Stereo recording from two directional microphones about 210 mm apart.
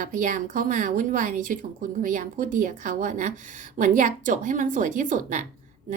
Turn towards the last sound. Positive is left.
turn(degrees=-40)  # may be behind; listen again after turning